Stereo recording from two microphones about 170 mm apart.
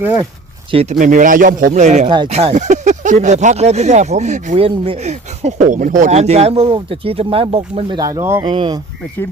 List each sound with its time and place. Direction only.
0.7 s speech: 35° right (ahead or behind)
0.9 s speech: 50° right (ahead or behind)
2.0 s speech: 25° right (ahead or behind)
2.3 s speech: 40° right (ahead or behind)
7.9 s speech: 20° right (ahead or behind)
8.4 s speech: 30° right (ahead or behind)